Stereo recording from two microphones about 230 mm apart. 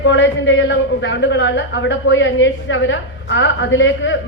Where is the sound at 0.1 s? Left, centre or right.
Left.